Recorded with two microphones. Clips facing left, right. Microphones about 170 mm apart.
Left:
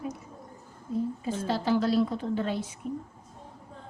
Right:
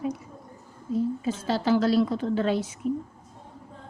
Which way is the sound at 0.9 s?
90° right.